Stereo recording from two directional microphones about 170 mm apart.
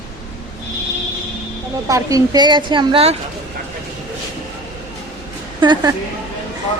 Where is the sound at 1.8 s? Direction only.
20° right (ahead or behind).